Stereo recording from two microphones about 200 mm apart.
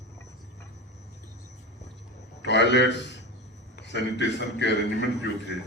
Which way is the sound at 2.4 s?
60° left (ahead or behind).